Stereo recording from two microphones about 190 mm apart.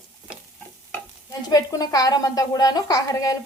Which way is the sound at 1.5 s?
20° left (ahead or behind).